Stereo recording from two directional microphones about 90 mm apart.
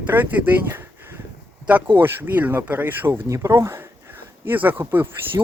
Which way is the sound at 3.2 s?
35° right (ahead or behind).